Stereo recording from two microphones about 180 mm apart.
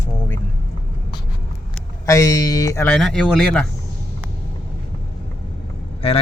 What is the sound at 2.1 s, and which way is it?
Speech, 20° left (ahead or behind).